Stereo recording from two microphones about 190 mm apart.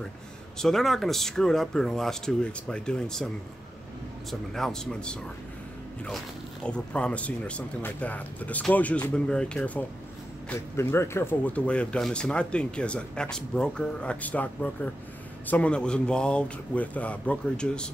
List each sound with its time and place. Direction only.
0.6 s speech: centre (ahead or behind)
4.3 s speech: 5° left (ahead or behind)